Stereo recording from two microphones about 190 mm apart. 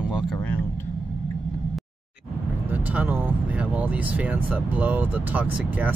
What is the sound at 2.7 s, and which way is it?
Speech, 10° right (ahead or behind).